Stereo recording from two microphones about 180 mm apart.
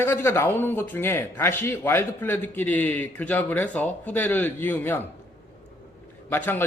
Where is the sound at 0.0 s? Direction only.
10° left (ahead or behind).